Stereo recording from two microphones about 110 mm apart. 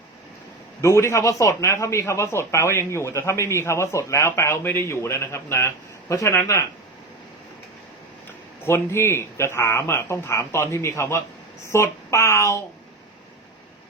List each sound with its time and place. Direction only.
0.8 s speech: 25° left (ahead or behind)
8.6 s speech: 20° left (ahead or behind)